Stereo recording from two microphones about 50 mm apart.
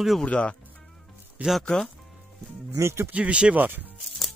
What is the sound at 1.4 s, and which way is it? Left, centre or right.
Speech, right.